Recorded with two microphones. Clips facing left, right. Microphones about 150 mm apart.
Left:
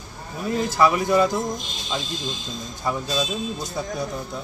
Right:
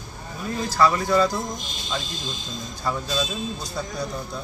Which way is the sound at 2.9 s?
15° left (ahead or behind).